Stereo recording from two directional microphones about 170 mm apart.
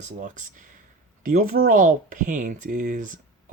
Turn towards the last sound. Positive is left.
turn(degrees=-50)  # may be behind; listen again after turning